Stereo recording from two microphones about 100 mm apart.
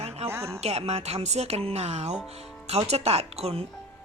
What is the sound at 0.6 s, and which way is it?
A woman's voice, 90° right.